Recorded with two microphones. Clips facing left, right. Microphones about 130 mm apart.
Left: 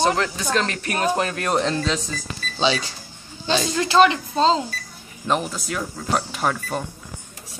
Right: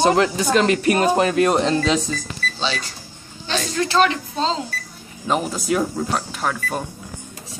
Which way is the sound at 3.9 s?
20° left (ahead or behind).